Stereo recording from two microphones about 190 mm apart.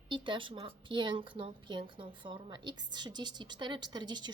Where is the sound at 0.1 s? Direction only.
25° right (ahead or behind).